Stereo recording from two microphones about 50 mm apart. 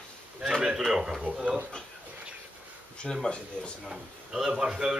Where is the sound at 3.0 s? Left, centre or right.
Centre.